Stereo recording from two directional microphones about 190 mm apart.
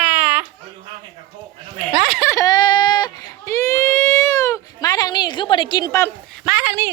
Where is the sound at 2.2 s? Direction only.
20° left (ahead or behind).